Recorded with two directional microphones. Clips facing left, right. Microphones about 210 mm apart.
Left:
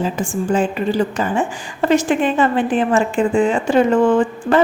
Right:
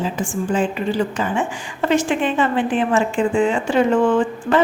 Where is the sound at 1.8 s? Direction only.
40° left (ahead or behind).